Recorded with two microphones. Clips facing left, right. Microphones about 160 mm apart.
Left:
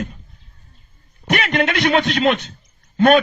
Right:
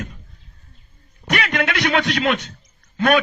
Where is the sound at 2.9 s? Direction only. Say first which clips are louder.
Left 4 dB; 40° left (ahead or behind).